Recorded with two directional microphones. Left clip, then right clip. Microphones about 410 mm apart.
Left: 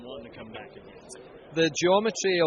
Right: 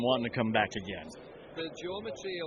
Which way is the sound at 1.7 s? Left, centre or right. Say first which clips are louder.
Left 15 dB; left.